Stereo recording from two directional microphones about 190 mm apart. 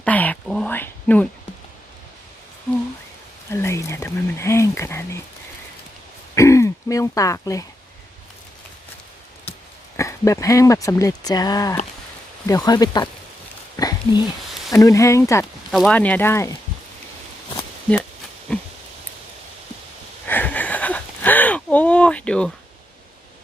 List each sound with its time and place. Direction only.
0.0 s speech: 10° left (ahead or behind)
3.5 s whispering: 15° left (ahead or behind)
6.3 s throat clearing: 15° left (ahead or behind)
10.0 s speech: 15° left (ahead or behind)
13.7 s a sound: 20° left (ahead or behind)
14.7 s speech: 15° left (ahead or behind)
15.7 s speech: 5° left (ahead or behind)
18.5 s a sound: 5° left (ahead or behind)
20.2 s a sound: 10° left (ahead or behind)